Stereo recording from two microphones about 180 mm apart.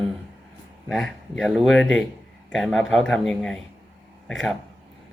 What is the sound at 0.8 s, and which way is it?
Speech, centre (ahead or behind).